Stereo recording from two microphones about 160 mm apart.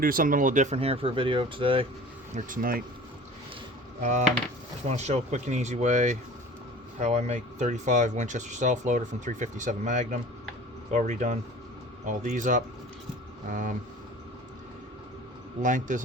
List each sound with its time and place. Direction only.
0.0 s speech: 60° right (ahead or behind); by 1.9 s 35° right (ahead or behind)
2.3 s speech: 60° right (ahead or behind)
4.9 s speech: 45° right (ahead or behind)
15.6 s speech: 55° right (ahead or behind)